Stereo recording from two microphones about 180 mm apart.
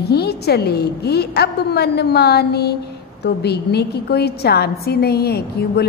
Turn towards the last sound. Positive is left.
turn(degrees=60)  # may be behind; listen again after turning